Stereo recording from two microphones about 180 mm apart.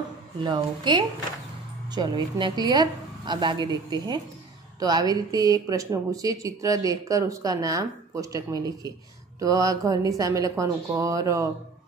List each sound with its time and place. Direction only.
0.4 s speech: 25° right (ahead or behind)